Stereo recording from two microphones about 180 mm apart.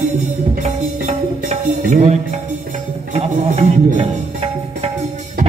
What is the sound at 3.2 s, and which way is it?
Music, 35° right (ahead or behind).